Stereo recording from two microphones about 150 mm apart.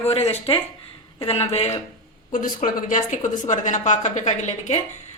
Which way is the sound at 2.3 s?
60° left (ahead or behind).